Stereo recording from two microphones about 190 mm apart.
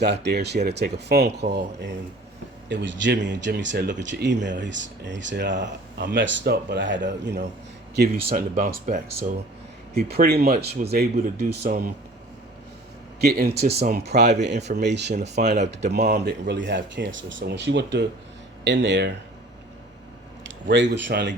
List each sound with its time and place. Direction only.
0.0 s speech: 60° right (ahead or behind)
7.9 s speech: 55° right (ahead or behind)
13.1 s speech: 55° right (ahead or behind)
20.7 s speech: 70° right (ahead or behind)